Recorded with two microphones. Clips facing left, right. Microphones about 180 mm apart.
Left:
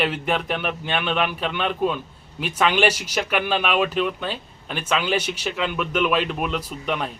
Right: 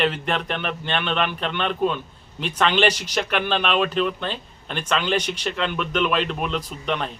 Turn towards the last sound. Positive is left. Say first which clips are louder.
# even
turn(degrees=5)  # may be behind; listen again after turning